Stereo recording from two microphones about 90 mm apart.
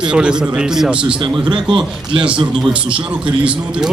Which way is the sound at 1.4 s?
60° right (ahead or behind).